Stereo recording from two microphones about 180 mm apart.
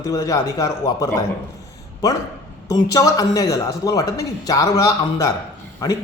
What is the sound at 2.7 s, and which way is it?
A man's voice, 20° left (ahead or behind).